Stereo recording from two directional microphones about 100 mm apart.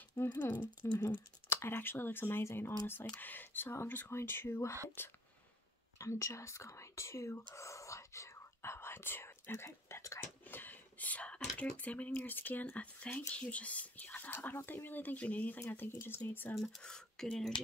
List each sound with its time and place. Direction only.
0.4 s speech: 20° left (ahead or behind)
5.9 s whispering: 30° left (ahead or behind)
12.1 s speech: 20° left (ahead or behind)
16.5 s speech: 5° left (ahead or behind)